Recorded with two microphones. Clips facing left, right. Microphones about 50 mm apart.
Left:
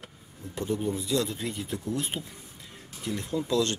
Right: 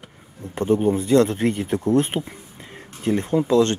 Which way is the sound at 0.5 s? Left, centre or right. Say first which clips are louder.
Right 10 dB; right.